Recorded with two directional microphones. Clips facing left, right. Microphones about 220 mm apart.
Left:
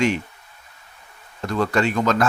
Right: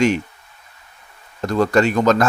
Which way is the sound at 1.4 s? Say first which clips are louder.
Right 5 dB; 40° right (ahead or behind).